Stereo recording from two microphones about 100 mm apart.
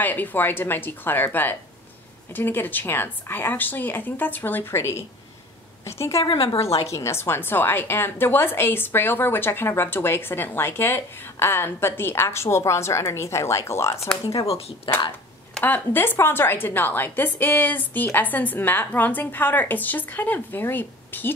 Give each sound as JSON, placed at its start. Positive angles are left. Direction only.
{"t": 0.0, "sound": "a woman's voice", "side_deg": 20}
{"t": 6.2, "sound": "a woman's voice", "side_deg": 65}
{"t": 6.9, "sound": "a woman's voice", "side_deg": 25}
{"t": 14.9, "sound": "speech", "side_deg": 60}
{"t": 15.6, "sound": "a woman's voice", "side_deg": 20}